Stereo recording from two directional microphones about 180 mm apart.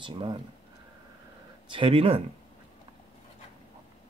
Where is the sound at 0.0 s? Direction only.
25° right (ahead or behind).